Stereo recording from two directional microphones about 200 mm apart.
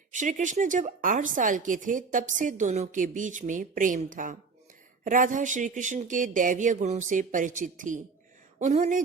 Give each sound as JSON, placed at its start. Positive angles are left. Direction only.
{"t": 0.1, "sound": "a woman's voice", "side_deg": -40}